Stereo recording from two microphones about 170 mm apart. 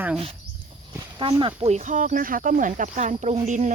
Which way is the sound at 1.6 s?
40° right (ahead or behind).